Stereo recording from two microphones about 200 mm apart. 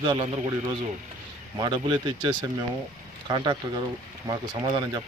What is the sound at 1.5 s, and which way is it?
Speech, 20° right (ahead or behind).